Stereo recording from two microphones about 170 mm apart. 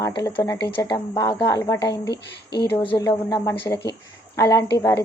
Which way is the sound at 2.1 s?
75° left (ahead or behind).